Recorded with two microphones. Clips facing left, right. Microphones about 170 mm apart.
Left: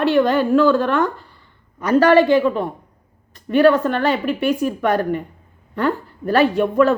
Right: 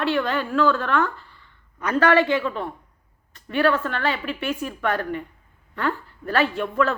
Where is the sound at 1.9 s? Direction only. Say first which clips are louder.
Left 6 dB; 35° left (ahead or behind).